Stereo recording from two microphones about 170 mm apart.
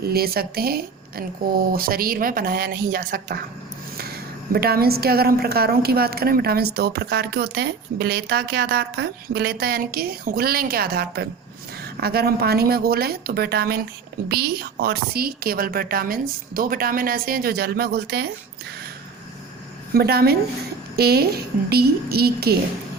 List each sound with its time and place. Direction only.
0.0 s a woman's voice: 65° right (ahead or behind)
19.9 s a woman's voice: 65° right (ahead or behind)